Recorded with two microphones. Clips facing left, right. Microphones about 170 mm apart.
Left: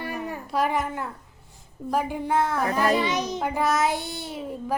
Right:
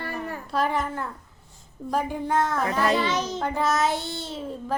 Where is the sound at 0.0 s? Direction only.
15° left (ahead or behind).